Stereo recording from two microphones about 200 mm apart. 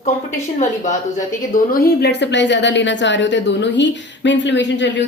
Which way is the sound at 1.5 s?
45° left (ahead or behind).